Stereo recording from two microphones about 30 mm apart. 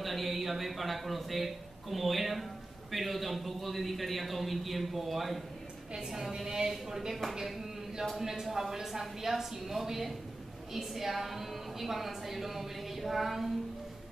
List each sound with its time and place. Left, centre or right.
0.0 s a man's voice: centre
6.3 s a woman's voice: centre
8.2 s a woman's voice: centre